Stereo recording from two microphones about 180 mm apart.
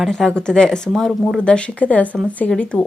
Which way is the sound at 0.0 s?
5° left (ahead or behind).